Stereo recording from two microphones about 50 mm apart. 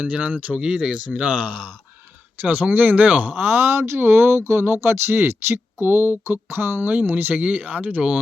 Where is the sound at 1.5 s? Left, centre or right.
Centre.